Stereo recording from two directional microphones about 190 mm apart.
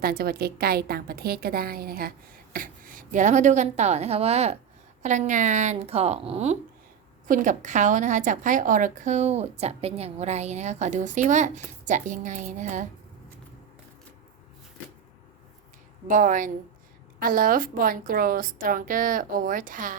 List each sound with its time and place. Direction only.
0.0 s a woman's voice: 50° right (ahead or behind)
16.0 s a woman's voice: 45° right (ahead or behind)